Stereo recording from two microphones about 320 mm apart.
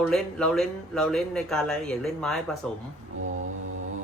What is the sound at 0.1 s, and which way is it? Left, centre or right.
Speech, centre.